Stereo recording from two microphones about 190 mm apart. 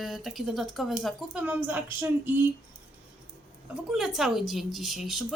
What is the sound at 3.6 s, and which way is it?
Speech, 5° right (ahead or behind).